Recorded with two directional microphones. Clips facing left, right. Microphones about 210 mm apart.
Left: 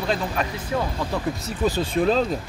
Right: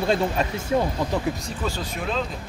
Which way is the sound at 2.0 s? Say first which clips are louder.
Left 10 dB; 35° left (ahead or behind).